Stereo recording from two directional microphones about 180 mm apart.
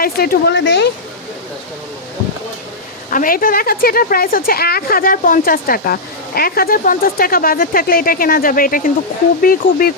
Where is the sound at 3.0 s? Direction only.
50° left (ahead or behind).